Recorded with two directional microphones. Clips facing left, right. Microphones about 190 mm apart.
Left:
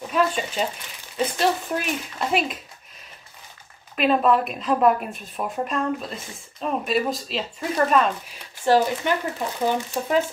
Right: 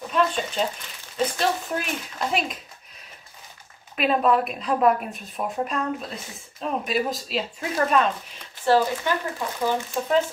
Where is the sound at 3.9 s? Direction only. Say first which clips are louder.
Left 2 dB; centre (ahead or behind).